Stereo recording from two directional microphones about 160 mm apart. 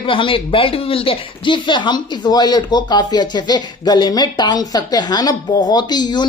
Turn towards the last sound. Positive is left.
turn(degrees=25)  # may be behind; listen again after turning